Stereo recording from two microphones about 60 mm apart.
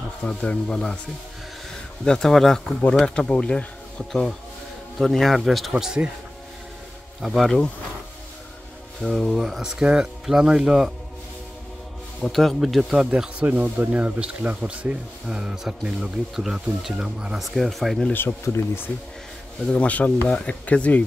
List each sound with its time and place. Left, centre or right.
0.2 s speech: centre
2.0 s speech: centre
3.2 s speech: centre
4.1 s speech: centre
7.2 s speech: centre
9.0 s speech: centre
9.4 s speech: centre
12.2 s speech: centre
12.5 s speech: centre
13.4 s speech: right
15.2 s speech: centre
17.4 s speech: centre
18.1 s speech: left
19.7 s speech: left